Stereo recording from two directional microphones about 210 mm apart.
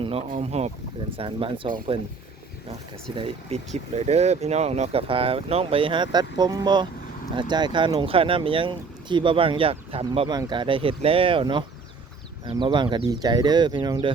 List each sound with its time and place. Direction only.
0.0 s speech: 25° right (ahead or behind)
3.2 s speech: 25° right (ahead or behind)